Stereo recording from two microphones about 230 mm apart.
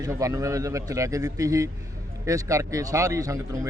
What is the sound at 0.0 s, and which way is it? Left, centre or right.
A man's voice, centre.